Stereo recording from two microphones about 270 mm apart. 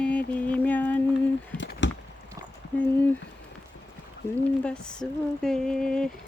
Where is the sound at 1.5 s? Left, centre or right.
Left.